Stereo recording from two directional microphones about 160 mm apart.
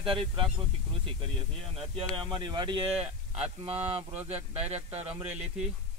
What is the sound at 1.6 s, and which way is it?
Speech, 35° right (ahead or behind).